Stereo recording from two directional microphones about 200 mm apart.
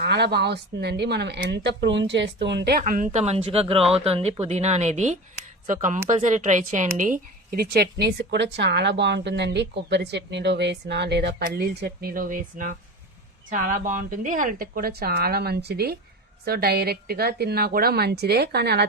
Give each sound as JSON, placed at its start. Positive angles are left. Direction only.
{"t": 0.0, "sound": "a woman's voice", "side_deg": -55}